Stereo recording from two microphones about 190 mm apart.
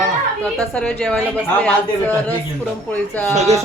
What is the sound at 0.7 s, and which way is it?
Speech, 5° left (ahead or behind).